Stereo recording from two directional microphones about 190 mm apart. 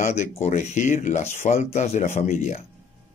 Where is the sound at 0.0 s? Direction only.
35° left (ahead or behind).